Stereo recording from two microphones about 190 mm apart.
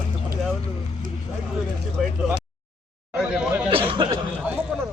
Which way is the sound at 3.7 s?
30° right (ahead or behind).